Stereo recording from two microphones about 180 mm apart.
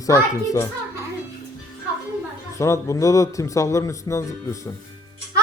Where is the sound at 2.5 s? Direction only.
15° left (ahead or behind).